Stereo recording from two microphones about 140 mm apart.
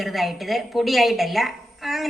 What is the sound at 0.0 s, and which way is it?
A woman's voice, centre (ahead or behind).